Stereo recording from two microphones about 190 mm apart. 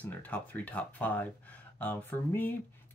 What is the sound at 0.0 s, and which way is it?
Speech, 10° left (ahead or behind).